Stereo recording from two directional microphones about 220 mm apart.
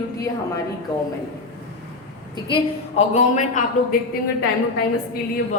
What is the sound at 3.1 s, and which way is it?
Speech, 35° left (ahead or behind).